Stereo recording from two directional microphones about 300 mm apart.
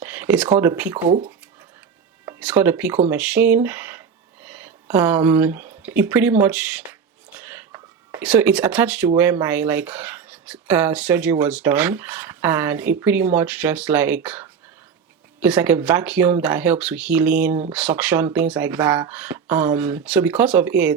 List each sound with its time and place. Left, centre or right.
0.0 s speech: centre
2.2 s speech: centre
7.3 s whispering: centre
8.2 s speech: centre